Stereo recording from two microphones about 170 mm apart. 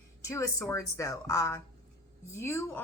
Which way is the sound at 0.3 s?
15° left (ahead or behind).